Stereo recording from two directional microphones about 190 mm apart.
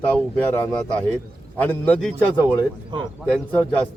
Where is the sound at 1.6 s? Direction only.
5° left (ahead or behind).